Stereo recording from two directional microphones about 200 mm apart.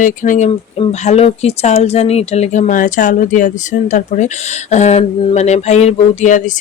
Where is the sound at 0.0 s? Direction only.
40° left (ahead or behind).